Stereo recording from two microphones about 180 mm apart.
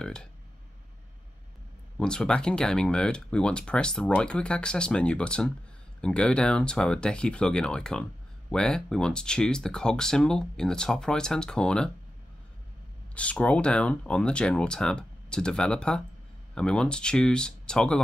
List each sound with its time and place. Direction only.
0.0 s a sound: 5° left (ahead or behind)
2.0 s speech: 5° left (ahead or behind)
13.1 s speech: 5° left (ahead or behind)